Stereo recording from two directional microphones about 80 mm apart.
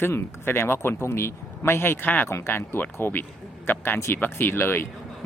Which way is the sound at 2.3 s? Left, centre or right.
Left.